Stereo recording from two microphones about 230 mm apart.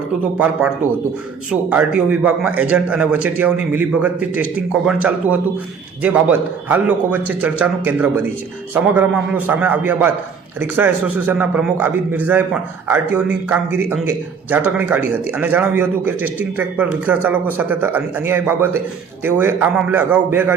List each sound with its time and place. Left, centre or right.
0.3 s a man's voice: centre